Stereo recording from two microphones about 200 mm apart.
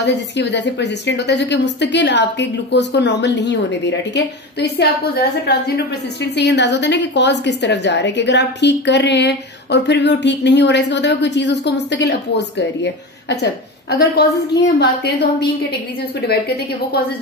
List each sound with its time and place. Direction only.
0.0 s a woman's voice: 60° left (ahead or behind)
6.3 s a woman's voice: 60° left (ahead or behind)